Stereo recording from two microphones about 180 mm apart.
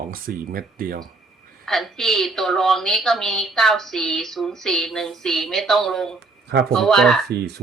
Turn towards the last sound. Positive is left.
turn(degrees=-65)  # may be behind; listen again after turning